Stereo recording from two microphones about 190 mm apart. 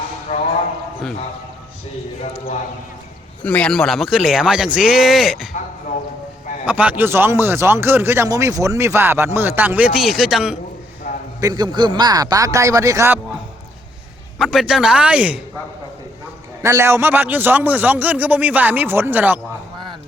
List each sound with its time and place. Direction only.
3.4 s speech: 5° left (ahead or behind)
6.7 s speech: 10° right (ahead or behind)
11.3 s speech: 20° right (ahead or behind)
14.3 s speech: centre (ahead or behind)
16.6 s speech: 15° right (ahead or behind)